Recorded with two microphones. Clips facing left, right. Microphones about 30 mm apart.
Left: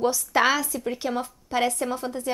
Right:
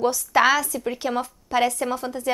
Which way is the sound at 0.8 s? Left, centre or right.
Centre.